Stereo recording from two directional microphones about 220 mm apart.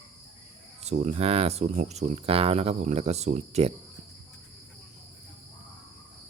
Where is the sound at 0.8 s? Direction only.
30° right (ahead or behind).